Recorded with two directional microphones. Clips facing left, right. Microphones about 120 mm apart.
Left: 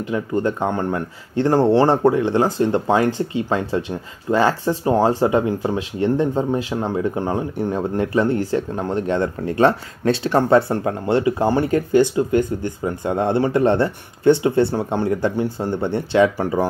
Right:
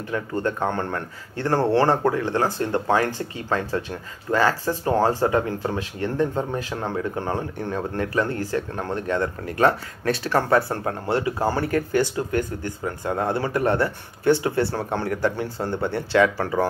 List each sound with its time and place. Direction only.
0.0 s speech: 20° left (ahead or behind)